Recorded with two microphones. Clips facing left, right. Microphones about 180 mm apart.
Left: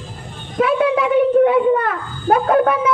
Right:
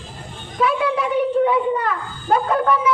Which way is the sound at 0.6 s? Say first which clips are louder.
Left 4 dB; 55° left (ahead or behind).